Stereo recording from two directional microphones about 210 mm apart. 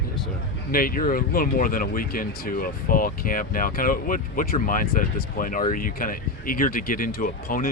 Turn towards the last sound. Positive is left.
turn(degrees=40)  # may be behind; listen again after turning